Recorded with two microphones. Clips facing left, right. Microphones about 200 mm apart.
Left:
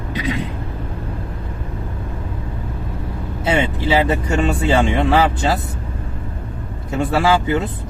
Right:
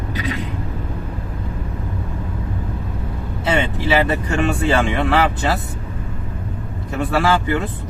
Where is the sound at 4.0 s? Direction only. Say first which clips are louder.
Left 1 dB; 15° left (ahead or behind).